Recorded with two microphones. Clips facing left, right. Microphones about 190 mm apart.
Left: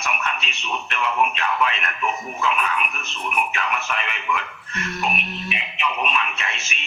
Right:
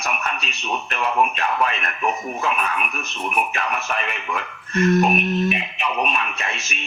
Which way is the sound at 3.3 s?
40° right (ahead or behind).